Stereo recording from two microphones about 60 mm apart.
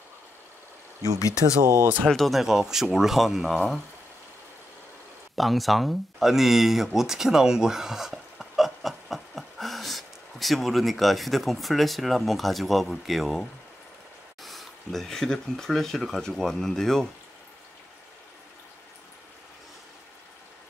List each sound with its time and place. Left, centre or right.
1.6 s speech: right
2.0 s speech: centre
5.3 s speech: centre